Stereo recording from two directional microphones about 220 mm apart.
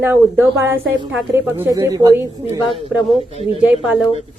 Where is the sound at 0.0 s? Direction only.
10° right (ahead or behind).